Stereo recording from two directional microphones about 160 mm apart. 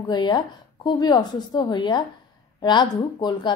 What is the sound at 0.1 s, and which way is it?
A woman's voice, 25° left (ahead or behind).